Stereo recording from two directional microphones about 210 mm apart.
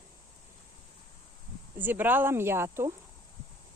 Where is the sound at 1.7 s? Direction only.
10° right (ahead or behind).